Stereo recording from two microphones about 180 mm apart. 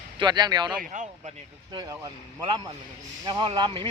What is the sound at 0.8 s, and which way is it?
Speech, 45° right (ahead or behind).